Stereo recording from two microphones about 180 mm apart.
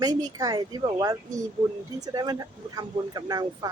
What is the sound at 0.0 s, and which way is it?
Speech, 20° right (ahead or behind).